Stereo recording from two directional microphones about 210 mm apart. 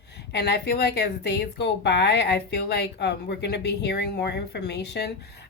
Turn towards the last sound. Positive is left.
turn(degrees=55)  # may be behind; listen again after turning